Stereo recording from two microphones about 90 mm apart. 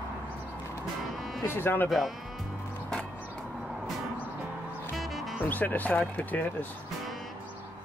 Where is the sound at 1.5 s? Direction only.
25° left (ahead or behind).